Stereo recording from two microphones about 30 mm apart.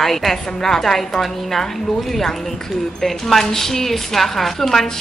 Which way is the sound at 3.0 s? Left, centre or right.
Centre.